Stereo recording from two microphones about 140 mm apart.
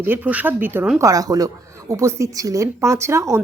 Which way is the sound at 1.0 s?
25° right (ahead or behind).